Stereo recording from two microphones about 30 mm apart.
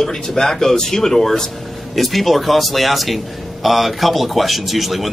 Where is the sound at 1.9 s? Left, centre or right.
Centre.